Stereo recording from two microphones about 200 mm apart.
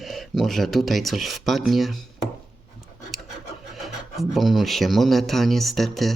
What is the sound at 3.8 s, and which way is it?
Speech, centre (ahead or behind).